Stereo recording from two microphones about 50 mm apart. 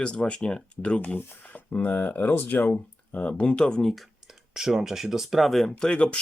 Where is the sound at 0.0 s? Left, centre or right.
Left.